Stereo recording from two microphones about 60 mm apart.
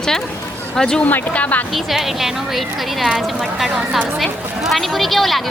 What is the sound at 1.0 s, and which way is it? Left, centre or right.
Speech, left.